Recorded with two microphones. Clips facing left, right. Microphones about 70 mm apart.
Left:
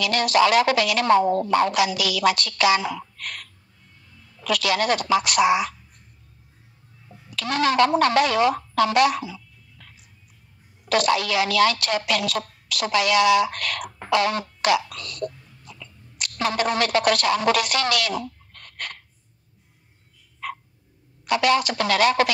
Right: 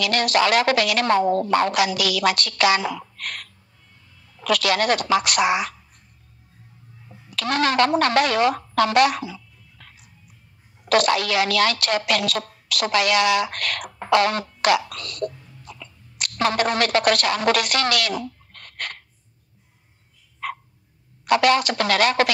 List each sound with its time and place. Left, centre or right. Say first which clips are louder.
0.0 s a woman's voice: left 1 dB; right
7.3 s a woman's voice: even; right
21.3 s a woman's voice: right 2 dB; right